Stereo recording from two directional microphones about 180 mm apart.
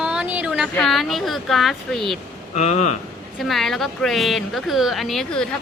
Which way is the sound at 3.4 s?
Centre (ahead or behind).